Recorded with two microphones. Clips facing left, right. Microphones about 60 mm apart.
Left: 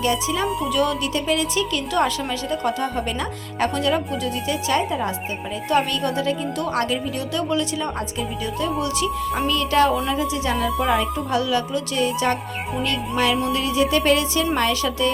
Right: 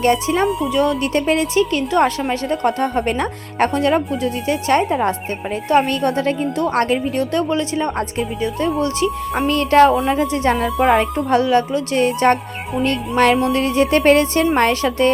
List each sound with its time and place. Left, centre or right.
0.0 s a woman's voice: right
4.8 s speech: right
5.6 s a woman's voice: right
6.0 s a woman's voice: right
9.5 s speech: right
11.3 s a woman's voice: right